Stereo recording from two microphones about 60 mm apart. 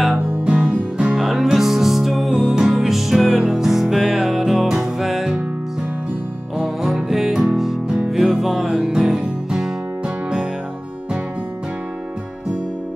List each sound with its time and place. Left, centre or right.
0.4 s music: centre
1.1 s music: centre
6.6 s music: centre